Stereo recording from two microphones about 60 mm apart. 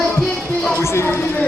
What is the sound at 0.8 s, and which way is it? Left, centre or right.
Speech, left.